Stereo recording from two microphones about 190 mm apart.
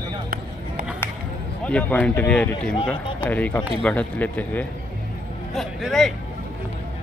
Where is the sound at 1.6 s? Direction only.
5° left (ahead or behind).